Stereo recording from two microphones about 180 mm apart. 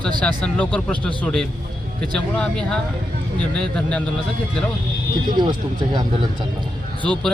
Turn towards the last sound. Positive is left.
turn(degrees=5)  # may be behind; listen again after turning